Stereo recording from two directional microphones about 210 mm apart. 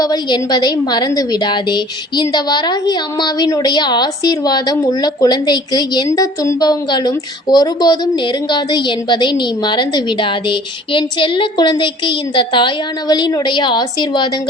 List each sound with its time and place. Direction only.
0.0 s a woman's voice: 20° left (ahead or behind)